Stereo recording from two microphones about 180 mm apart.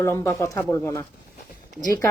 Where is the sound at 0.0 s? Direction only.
15° left (ahead or behind).